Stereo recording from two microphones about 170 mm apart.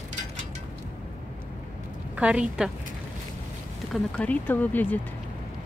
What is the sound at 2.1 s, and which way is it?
Speech, 5° right (ahead or behind).